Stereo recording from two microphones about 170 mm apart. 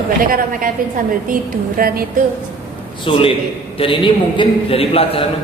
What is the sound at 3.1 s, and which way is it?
A man's voice, 30° left (ahead or behind).